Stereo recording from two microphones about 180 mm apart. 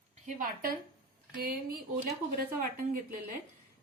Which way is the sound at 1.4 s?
55° right (ahead or behind).